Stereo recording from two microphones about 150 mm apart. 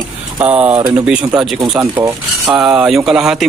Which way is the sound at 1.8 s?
15° right (ahead or behind).